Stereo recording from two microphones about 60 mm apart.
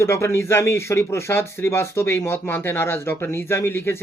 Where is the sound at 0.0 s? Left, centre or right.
Left.